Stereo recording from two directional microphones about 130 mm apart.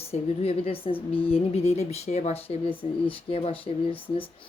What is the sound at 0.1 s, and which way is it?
Speech, 50° left (ahead or behind).